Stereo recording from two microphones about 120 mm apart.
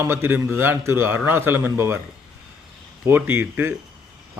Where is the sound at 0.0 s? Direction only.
20° right (ahead or behind).